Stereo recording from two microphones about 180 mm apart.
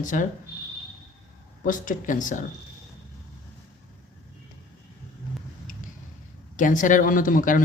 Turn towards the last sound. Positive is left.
turn(degrees=50)  # may be behind; listen again after turning